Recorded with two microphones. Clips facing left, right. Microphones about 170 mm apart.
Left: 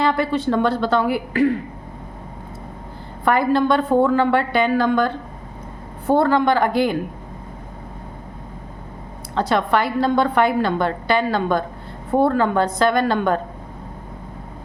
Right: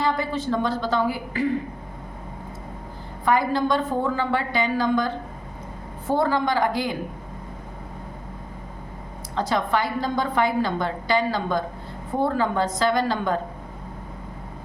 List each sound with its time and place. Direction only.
0.0 s a woman's voice: 70° left (ahead or behind)
3.2 s a woman's voice: 60° left (ahead or behind)
9.3 s a woman's voice: 65° left (ahead or behind)